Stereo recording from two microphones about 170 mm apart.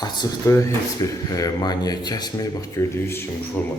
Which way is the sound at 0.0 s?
20° left (ahead or behind).